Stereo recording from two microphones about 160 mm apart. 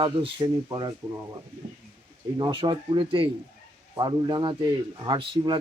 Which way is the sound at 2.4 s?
30° right (ahead or behind).